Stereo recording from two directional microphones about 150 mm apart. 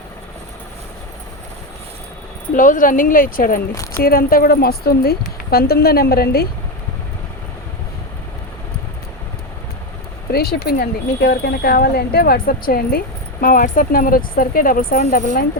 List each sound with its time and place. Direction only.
2.6 s speech: 60° left (ahead or behind)
4.0 s speech: 85° left
10.3 s speech: 90° left
13.4 s speech: 65° left (ahead or behind)